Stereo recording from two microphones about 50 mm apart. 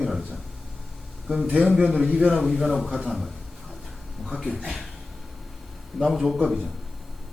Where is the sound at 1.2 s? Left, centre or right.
Centre.